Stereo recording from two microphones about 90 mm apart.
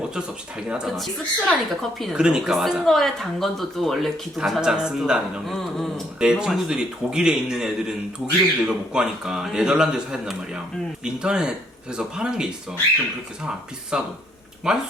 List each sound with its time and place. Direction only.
0.1 s a man's voice: 10° right (ahead or behind)
0.9 s speech: centre (ahead or behind)
6.1 s a man's voice: 10° right (ahead or behind)
13.9 s a man's voice: 10° right (ahead or behind)